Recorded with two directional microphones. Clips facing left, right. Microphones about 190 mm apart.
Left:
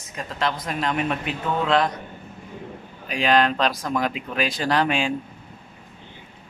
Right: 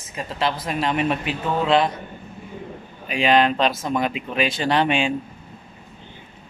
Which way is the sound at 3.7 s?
25° right (ahead or behind).